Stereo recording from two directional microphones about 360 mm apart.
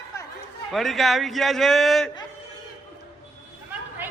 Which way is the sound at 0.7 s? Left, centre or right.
Centre.